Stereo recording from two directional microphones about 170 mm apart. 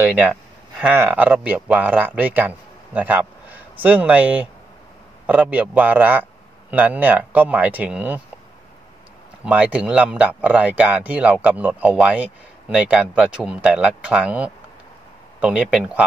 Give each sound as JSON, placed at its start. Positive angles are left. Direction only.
{"t": 0.0, "sound": "speech", "side_deg": -10}
{"t": 9.4, "sound": "speech", "side_deg": -5}